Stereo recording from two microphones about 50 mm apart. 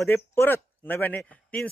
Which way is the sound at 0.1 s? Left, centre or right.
Left.